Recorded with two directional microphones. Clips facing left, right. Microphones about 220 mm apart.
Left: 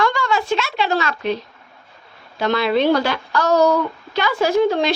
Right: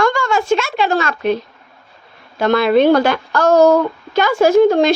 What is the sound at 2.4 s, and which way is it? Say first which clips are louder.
A woman's voice: right 5 dB; 50° right (ahead or behind).